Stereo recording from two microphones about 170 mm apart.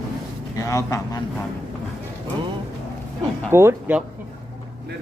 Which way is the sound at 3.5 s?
15° right (ahead or behind).